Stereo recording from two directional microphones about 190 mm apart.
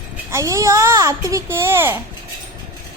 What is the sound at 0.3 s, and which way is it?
A woman's voice, 15° right (ahead or behind).